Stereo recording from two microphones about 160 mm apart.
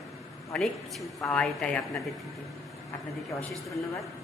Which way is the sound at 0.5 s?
Centre (ahead or behind).